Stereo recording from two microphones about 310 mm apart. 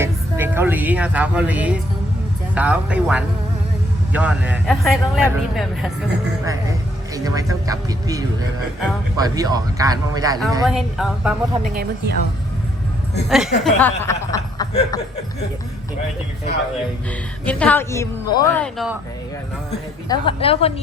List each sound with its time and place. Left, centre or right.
0.0 s a man's voice: centre
10.8 s speech: centre
11.7 s speech: right
13.2 s speech: centre
17.4 s speech: centre
18.6 s speech: centre
20.1 s speech: centre